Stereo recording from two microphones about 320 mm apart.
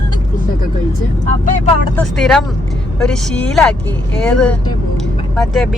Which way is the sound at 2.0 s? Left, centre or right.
Centre.